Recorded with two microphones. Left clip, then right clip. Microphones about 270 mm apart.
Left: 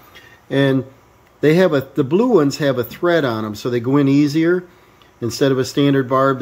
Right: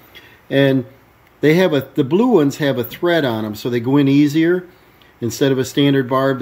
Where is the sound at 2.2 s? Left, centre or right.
Centre.